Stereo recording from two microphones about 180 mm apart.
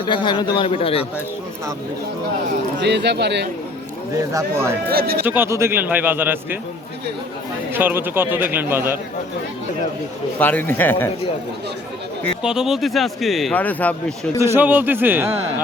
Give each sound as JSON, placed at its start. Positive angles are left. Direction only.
{"t": 0.0, "sound": "a man's voice", "side_deg": 25}
{"t": 2.8, "sound": "speech", "side_deg": -70}
{"t": 4.1, "sound": "speech", "side_deg": -20}
{"t": 4.9, "sound": "speech", "side_deg": -60}
{"t": 5.2, "sound": "speech", "side_deg": -10}
{"t": 7.7, "sound": "speech", "side_deg": -10}
{"t": 10.3, "sound": "speech", "side_deg": 10}
{"t": 12.4, "sound": "speech", "side_deg": -5}
{"t": 14.3, "sound": "speech", "side_deg": -15}